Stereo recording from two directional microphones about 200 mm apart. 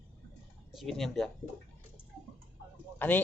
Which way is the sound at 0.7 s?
Centre (ahead or behind).